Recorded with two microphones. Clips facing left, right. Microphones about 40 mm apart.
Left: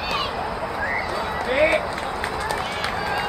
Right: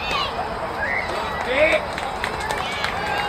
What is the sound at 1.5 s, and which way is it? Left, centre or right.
Run, right.